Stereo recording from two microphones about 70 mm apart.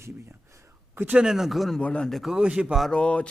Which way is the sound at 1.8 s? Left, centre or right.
Centre.